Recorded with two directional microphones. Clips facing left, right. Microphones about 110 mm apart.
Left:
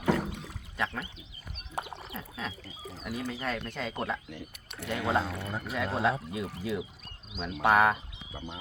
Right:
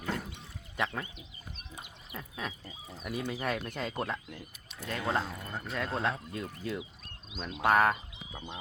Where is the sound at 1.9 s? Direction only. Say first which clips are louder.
Left 11 dB; 90° left.